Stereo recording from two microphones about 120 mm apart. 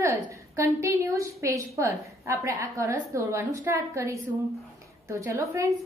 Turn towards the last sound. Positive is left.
turn(degrees=-25)  # may be behind; listen again after turning